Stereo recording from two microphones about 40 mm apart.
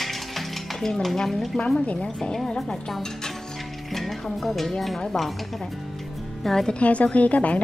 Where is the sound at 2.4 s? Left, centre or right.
Centre.